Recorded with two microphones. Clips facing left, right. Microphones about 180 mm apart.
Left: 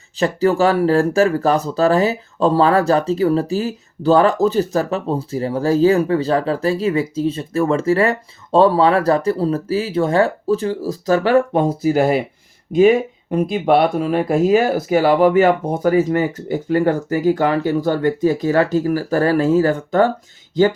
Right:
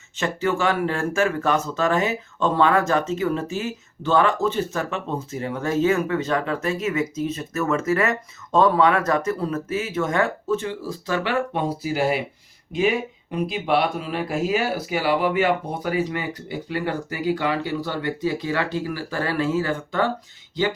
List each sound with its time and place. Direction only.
0.2 s speech: 35° left (ahead or behind)